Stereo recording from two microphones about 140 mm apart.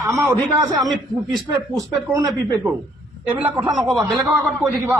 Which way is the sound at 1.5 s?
25° right (ahead or behind).